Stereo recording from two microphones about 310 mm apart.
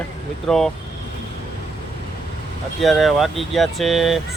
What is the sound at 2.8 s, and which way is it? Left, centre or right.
Speech, centre.